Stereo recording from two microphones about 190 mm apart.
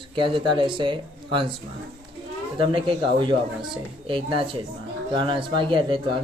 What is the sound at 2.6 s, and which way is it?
Speech, 25° right (ahead or behind).